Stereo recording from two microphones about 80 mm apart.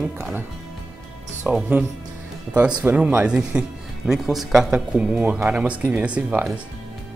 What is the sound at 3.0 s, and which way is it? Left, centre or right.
Speech, centre.